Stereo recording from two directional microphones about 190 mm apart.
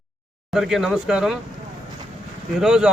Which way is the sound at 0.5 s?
Centre (ahead or behind).